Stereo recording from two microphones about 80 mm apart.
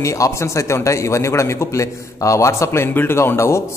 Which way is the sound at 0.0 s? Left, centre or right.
Left.